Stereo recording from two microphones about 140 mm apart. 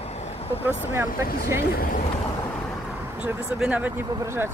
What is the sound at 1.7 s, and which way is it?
Speech, 90° left.